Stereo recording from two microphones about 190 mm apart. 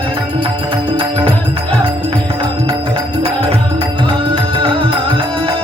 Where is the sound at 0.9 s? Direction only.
30° right (ahead or behind).